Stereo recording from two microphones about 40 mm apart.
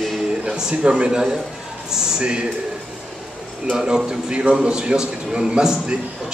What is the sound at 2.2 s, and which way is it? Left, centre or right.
Speech, right.